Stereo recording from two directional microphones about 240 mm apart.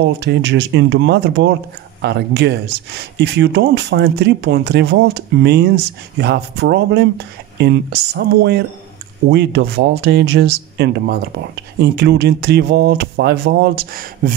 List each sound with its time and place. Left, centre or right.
0.0 s speech: right